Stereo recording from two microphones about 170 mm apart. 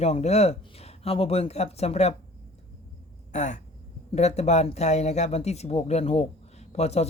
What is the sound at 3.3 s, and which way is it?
Speech, 45° left (ahead or behind).